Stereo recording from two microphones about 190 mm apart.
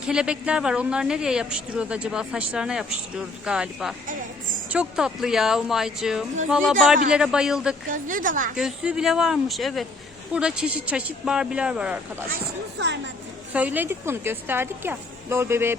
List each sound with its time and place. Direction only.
0.0 s speech: 5° right (ahead or behind)
7.9 s a woman's voice: 45° right (ahead or behind)
8.5 s speech: 5° right (ahead or behind)
13.5 s a woman's voice: 10° right (ahead or behind)